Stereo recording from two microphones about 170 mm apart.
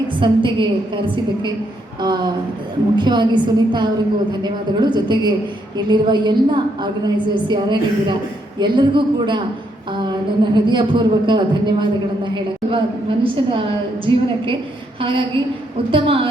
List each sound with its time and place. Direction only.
0.2 s a man's voice: 30° right (ahead or behind)